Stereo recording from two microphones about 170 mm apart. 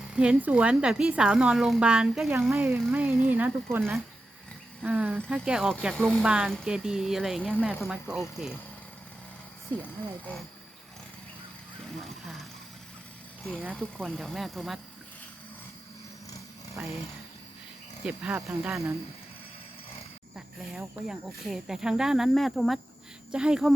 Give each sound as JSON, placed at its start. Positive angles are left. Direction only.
{"t": 0.1, "sound": "speech", "side_deg": -5}
{"t": 2.6, "sound": "speech", "side_deg": -15}
{"t": 11.9, "sound": "speech", "side_deg": 0}
{"t": 13.5, "sound": "speech", "side_deg": 0}
{"t": 18.0, "sound": "speech", "side_deg": -5}
{"t": 20.3, "sound": "speech", "side_deg": 0}